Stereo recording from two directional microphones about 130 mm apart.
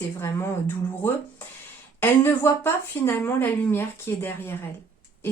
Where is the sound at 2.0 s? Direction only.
15° left (ahead or behind).